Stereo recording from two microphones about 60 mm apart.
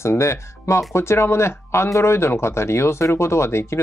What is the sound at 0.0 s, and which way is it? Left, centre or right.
Speech, left.